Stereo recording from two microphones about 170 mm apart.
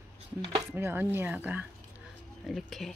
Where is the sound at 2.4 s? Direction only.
Centre (ahead or behind).